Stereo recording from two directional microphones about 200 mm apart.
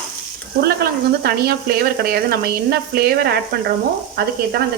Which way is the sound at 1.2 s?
50° right (ahead or behind).